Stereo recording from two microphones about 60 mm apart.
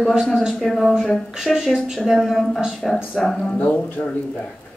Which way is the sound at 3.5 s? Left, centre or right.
Left.